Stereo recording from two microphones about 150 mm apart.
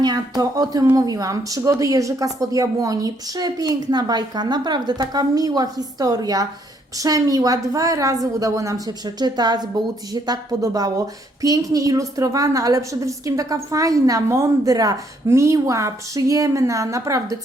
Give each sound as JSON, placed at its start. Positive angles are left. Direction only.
{"t": 0.0, "sound": "a woman's voice", "side_deg": -25}